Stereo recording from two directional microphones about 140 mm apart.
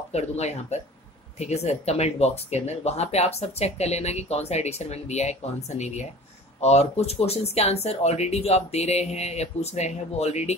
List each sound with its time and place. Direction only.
0.1 s speech: 50° left (ahead or behind)